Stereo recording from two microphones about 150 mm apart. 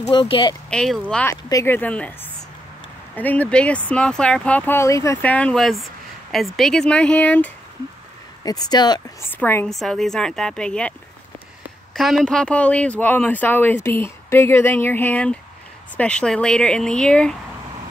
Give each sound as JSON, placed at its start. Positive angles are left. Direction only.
{"t": 0.1, "sound": "speech", "side_deg": 35}
{"t": 0.7, "sound": "speech", "side_deg": 5}
{"t": 1.3, "sound": "speech", "side_deg": 20}
{"t": 3.2, "sound": "speech", "side_deg": 10}
{"t": 8.5, "sound": "speech", "side_deg": 25}
{"t": 9.3, "sound": "speech", "side_deg": 15}
{"t": 9.7, "sound": "a woman's voice", "side_deg": 0}